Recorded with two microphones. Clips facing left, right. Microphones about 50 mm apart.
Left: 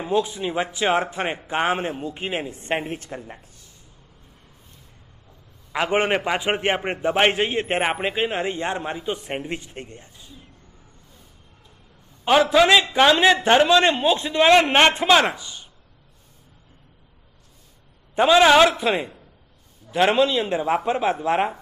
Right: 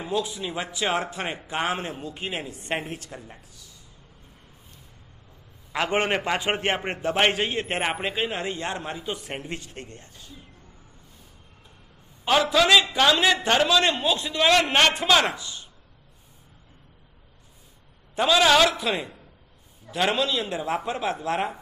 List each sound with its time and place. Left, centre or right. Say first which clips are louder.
0.0 s a man's voice: left 5 dB; left
5.7 s a man's voice: left 3 dB; centre
12.5 s a man's voice: left 2 dB; centre
18.1 s a man's voice: left 5 dB; left